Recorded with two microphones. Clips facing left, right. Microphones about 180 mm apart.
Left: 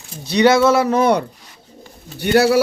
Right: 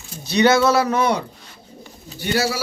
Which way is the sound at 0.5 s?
25° left (ahead or behind).